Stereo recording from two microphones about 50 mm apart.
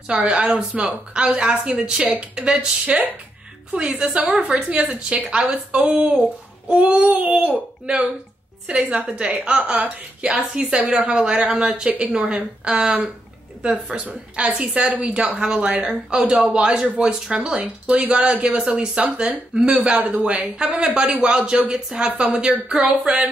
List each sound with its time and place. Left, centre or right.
0.1 s a woman's voice: right
0.8 s a woman's voice: centre
4.6 s speech: centre
5.1 s a woman's voice: right
7.8 s a woman's voice: right
13.9 s a woman's voice: right